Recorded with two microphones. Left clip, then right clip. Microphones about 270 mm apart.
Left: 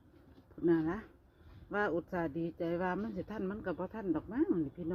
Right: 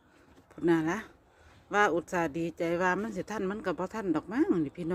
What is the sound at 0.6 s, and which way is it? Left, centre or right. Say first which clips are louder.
Speech: right 4 dB; centre.